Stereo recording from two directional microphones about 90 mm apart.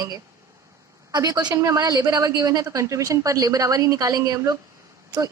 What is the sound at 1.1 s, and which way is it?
Speech, 45° right (ahead or behind).